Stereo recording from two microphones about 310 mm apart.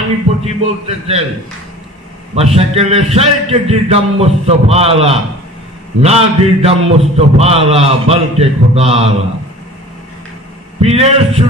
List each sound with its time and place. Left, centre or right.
0.4 s a man's voice: centre
2.3 s a man's voice: centre
10.8 s a man's voice: centre